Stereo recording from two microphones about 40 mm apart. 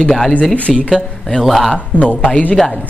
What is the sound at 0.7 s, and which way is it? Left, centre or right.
A man's voice, centre.